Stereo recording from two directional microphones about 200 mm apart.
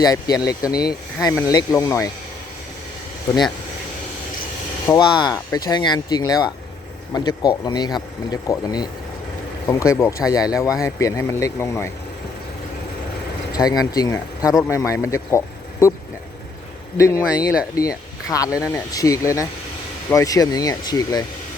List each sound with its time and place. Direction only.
0.0 s speech: 20° left (ahead or behind)
4.9 s speech: 20° left (ahead or behind)
13.5 s speech: 20° left (ahead or behind)
17.0 s speech: 15° left (ahead or behind)